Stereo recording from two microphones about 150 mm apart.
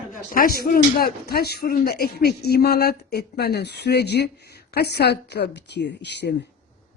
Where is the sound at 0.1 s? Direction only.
65° left (ahead or behind); by 5.5 s 90° left.